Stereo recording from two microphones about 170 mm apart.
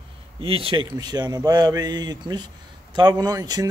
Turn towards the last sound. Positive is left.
turn(degrees=-20)  # may be behind; listen again after turning